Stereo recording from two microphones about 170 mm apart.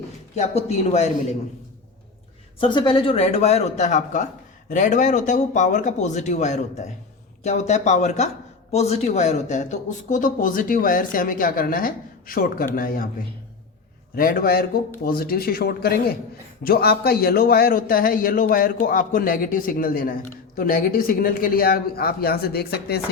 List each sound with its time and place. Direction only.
0.3 s speech: 40° left (ahead or behind)
2.6 s speech: 30° left (ahead or behind); by 13.1 s 60° left (ahead or behind)
14.2 s a man's voice: 60° left (ahead or behind)